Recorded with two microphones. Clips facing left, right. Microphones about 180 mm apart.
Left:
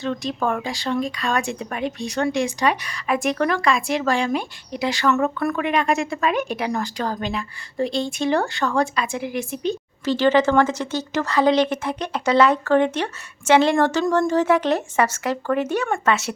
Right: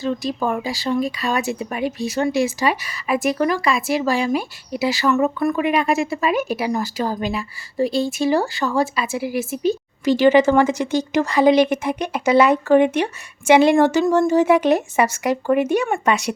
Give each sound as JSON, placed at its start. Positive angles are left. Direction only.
{"t": 0.0, "sound": "speech", "side_deg": -5}